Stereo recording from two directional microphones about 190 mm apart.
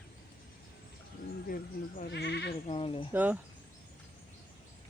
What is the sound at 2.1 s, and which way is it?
Speech, 65° left (ahead or behind).